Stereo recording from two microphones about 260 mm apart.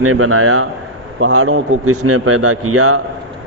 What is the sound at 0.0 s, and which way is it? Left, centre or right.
A man's voice, right.